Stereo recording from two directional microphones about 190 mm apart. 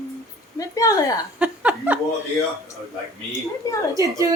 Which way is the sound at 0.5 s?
20° left (ahead or behind).